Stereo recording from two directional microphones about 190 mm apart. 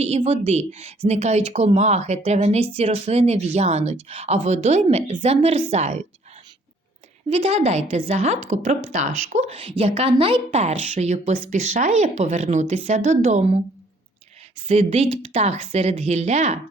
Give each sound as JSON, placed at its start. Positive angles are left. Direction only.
{"t": 0.0, "sound": "speech", "side_deg": -35}
{"t": 7.3, "sound": "speech", "side_deg": -30}
{"t": 14.7, "sound": "speech", "side_deg": -35}